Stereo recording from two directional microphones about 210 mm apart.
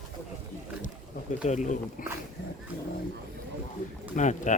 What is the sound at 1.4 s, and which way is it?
Speech, 35° left (ahead or behind).